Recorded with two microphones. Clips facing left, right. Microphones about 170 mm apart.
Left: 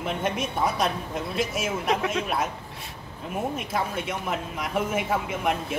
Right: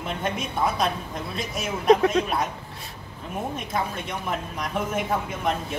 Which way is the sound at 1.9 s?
40° right (ahead or behind).